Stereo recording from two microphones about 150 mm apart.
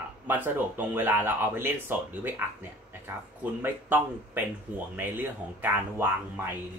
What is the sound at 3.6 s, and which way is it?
Speech, 15° right (ahead or behind).